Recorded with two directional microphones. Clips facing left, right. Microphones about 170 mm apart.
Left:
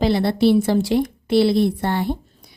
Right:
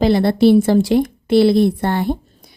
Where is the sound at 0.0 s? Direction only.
50° right (ahead or behind).